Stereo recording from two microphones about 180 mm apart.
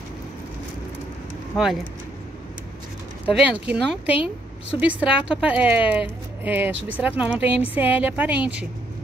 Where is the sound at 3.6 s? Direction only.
5° right (ahead or behind).